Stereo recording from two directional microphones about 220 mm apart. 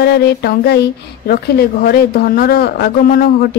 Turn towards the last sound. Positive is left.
turn(degrees=40)  # may be behind; listen again after turning